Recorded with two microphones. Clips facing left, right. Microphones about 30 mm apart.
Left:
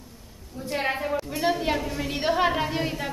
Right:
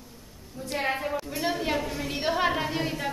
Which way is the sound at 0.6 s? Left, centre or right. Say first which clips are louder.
Left 2 dB; centre.